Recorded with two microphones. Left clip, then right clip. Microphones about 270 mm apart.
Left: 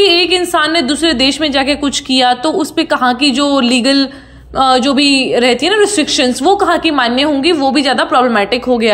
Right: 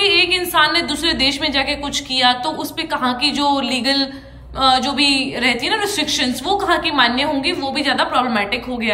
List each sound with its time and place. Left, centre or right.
0.0 s a woman's voice: centre